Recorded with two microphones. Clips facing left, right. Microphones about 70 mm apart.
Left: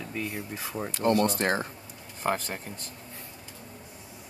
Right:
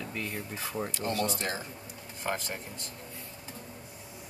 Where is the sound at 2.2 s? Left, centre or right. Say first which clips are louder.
Left 5 dB; left.